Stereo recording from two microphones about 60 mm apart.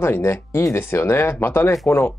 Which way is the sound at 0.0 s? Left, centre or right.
Left.